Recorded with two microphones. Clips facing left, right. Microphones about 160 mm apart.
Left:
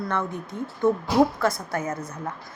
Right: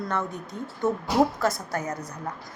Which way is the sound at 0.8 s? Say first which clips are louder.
Left 4 dB; 20° right (ahead or behind).